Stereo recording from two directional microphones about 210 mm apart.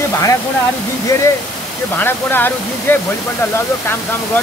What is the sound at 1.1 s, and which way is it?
Speech, 15° left (ahead or behind).